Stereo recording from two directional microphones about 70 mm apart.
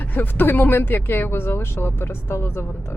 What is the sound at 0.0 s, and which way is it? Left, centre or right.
Speech, left.